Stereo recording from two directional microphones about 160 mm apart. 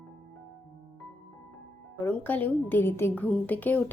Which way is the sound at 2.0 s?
10° left (ahead or behind).